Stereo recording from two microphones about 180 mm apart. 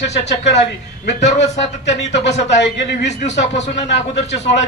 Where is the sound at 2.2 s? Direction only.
75° left (ahead or behind).